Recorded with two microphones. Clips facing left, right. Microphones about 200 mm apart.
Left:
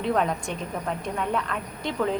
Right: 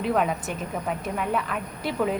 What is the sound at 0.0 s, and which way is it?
A woman's voice, 5° right (ahead or behind).